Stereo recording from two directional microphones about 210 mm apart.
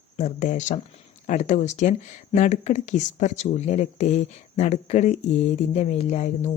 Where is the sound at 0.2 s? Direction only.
35° left (ahead or behind).